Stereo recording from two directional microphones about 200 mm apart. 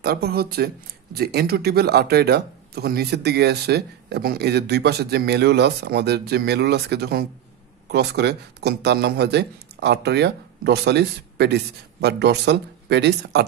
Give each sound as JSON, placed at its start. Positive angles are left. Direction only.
{"t": 0.0, "sound": "speech", "side_deg": -50}